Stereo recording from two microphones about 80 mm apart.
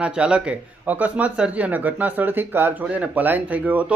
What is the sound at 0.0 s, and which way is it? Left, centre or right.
Speech, centre.